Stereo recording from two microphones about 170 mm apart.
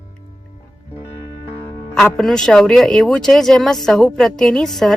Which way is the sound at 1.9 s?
5° left (ahead or behind).